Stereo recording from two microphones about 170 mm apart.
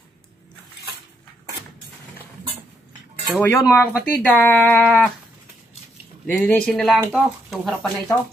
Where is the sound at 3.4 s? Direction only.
15° left (ahead or behind).